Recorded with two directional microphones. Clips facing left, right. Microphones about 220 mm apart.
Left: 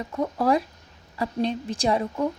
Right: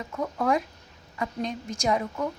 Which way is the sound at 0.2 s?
35° left (ahead or behind).